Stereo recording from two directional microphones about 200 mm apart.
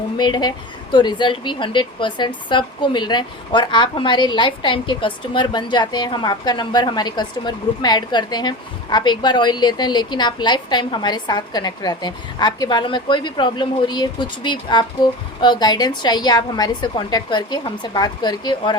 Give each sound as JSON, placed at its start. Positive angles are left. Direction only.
{"t": 0.2, "sound": "speech", "side_deg": 20}